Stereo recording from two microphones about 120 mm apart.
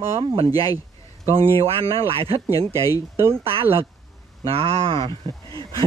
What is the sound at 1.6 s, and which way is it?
Speech, 50° right (ahead or behind).